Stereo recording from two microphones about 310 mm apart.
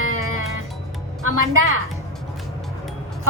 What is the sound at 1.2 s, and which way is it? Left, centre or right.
Speech, right.